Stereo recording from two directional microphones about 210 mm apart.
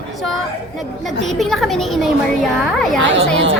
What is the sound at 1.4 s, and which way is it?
Speech, centre (ahead or behind).